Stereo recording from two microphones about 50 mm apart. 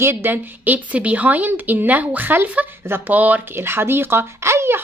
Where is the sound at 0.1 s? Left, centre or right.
Right.